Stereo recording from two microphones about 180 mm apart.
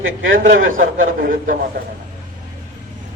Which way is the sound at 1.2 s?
50° right (ahead or behind).